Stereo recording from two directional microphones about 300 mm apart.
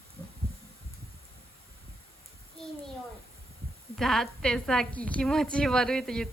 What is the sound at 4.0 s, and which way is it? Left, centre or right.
A woman's voice, centre.